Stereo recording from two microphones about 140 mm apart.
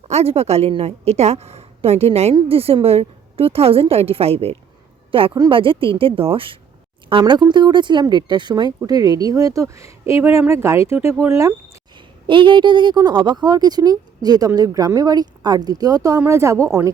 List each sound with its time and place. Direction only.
0.1 s a woman's voice: 50° right (ahead or behind); by 11.5 s 20° right (ahead or behind)
12.3 s speech: 35° right (ahead or behind); by 16.6 s 20° right (ahead or behind)